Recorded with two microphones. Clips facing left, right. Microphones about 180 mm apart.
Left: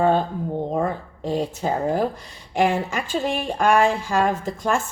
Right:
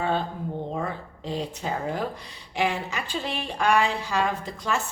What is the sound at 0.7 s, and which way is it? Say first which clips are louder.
Speech: left 7 dB; 45° left (ahead or behind).